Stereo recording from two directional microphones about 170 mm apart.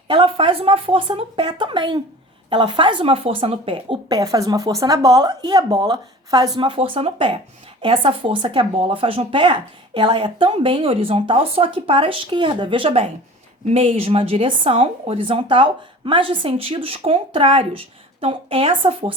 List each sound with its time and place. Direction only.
0.1 s speech: 30° right (ahead or behind)